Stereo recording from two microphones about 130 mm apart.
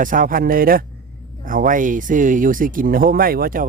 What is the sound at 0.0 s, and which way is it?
Speech, 90° right.